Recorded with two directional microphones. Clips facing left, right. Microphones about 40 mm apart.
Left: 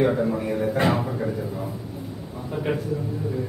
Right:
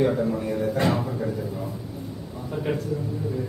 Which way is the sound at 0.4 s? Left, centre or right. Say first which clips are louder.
Left 1 dB; left.